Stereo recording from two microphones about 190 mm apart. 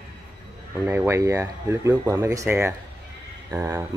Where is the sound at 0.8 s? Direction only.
10° right (ahead or behind).